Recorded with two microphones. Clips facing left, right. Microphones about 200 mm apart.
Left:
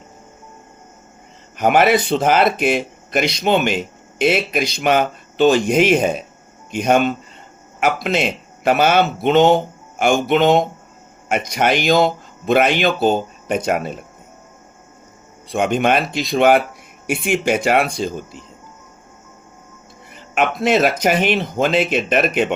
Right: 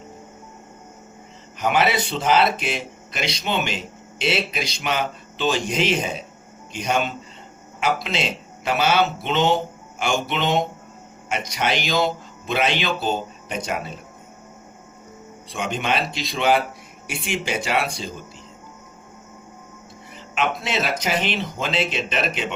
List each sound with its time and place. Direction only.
1.5 s speech: 55° left (ahead or behind)
15.5 s speech: 55° left (ahead or behind)
20.3 s speech: 55° left (ahead or behind)